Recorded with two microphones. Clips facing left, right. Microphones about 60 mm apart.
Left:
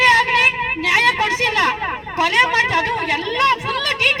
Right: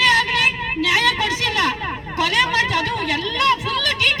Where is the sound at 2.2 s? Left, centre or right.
Left.